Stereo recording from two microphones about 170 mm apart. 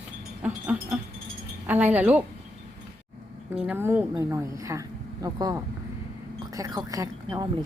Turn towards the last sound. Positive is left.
turn(degrees=-20)  # may be behind; listen again after turning